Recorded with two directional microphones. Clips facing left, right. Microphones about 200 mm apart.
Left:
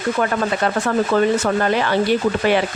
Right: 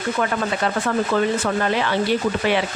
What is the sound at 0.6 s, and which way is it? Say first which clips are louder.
Speech: left 2 dB; 45° left (ahead or behind).